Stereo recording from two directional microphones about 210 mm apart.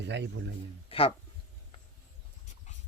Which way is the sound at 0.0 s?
55° right (ahead or behind).